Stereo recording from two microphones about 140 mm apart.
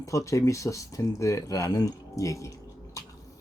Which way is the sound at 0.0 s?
20° left (ahead or behind).